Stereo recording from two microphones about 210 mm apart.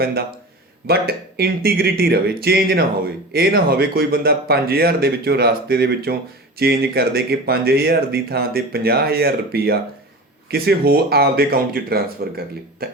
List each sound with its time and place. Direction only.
0.0 s speech: 45° right (ahead or behind)